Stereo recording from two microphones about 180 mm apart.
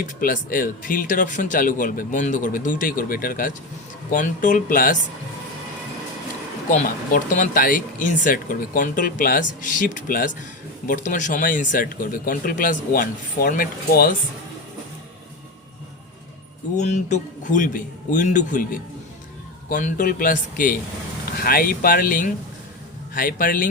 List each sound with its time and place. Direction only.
0.0 s speech: 50° left (ahead or behind)
6.8 s speech: 50° left (ahead or behind)
16.7 s speech: 40° left (ahead or behind)